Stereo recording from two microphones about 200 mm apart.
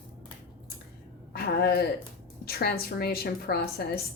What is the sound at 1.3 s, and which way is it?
A woman's voice, 50° left (ahead or behind).